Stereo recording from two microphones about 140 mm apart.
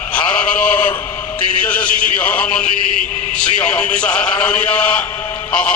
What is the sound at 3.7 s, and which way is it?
A man's voice, 10° left (ahead or behind).